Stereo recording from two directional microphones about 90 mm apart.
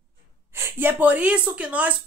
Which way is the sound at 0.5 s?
25° right (ahead or behind).